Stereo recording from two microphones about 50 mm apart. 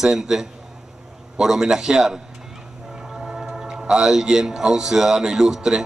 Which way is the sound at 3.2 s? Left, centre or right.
Centre.